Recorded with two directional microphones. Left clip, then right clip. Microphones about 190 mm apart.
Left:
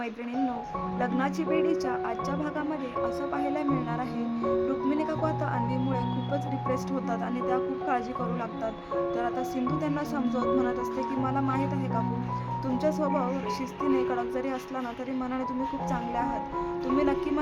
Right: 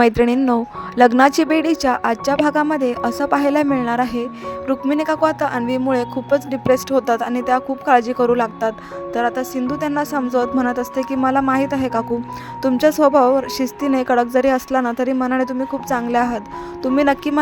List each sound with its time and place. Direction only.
0.0 s speech: 55° right (ahead or behind)